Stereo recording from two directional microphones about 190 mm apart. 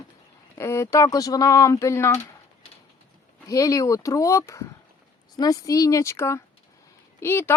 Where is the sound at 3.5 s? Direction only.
20° left (ahead or behind).